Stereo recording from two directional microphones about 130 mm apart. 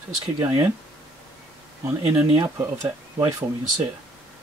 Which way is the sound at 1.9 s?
20° right (ahead or behind).